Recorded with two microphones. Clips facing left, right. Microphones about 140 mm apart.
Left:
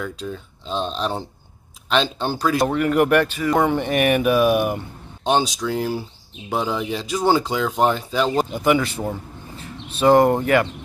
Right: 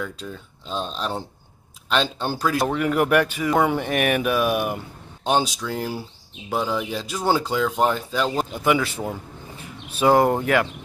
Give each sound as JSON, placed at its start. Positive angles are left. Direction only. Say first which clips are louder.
{"t": 0.0, "sound": "speech", "louder": "left 3 dB", "side_deg": 0}